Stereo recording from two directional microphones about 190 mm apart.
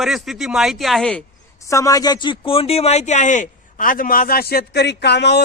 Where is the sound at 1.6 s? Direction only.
15° left (ahead or behind).